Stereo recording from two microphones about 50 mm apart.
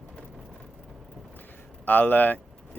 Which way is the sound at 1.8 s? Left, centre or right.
Left.